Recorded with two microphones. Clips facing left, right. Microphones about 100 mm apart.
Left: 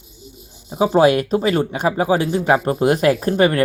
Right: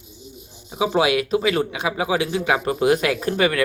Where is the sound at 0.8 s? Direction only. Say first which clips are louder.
Left 5 dB; 40° left (ahead or behind).